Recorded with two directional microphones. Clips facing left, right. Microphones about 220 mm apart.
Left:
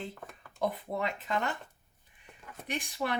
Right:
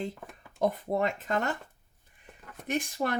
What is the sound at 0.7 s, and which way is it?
Speech, 45° right (ahead or behind).